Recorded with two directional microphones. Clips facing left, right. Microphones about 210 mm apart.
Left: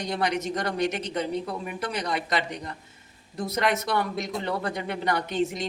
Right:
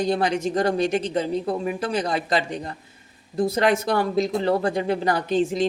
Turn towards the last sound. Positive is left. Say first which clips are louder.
# right 5 dB
turn(degrees=-30)  # may be behind; listen again after turning